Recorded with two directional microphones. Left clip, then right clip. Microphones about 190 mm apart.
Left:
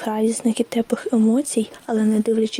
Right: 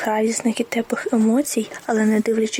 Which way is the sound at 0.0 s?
35° left (ahead or behind).